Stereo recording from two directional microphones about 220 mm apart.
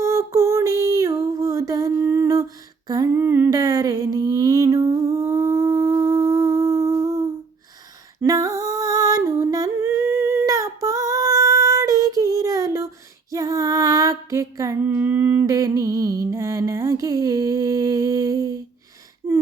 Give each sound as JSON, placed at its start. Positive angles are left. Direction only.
{"t": 0.0, "sound": "female singing", "side_deg": -15}
{"t": 8.2, "sound": "a sound", "side_deg": -15}
{"t": 13.3, "sound": "female singing", "side_deg": -15}